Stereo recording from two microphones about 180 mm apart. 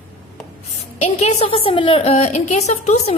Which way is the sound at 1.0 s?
35° left (ahead or behind).